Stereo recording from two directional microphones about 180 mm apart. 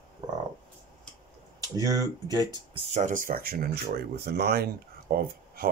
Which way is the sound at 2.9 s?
45° right (ahead or behind).